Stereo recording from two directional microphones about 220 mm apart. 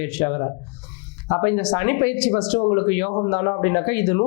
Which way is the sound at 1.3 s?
20° left (ahead or behind).